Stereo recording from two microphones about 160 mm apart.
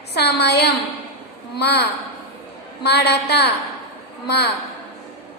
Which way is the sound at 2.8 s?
90° left.